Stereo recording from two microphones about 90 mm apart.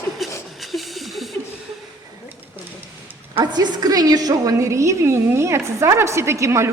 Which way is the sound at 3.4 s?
50° right (ahead or behind).